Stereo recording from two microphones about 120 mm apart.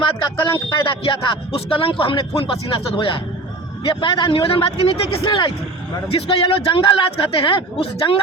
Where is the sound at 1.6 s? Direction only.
50° left (ahead or behind).